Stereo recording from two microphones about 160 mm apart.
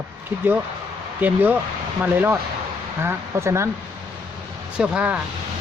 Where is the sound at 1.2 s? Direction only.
10° right (ahead or behind).